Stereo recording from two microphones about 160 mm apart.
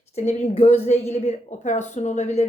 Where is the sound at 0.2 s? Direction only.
40° left (ahead or behind).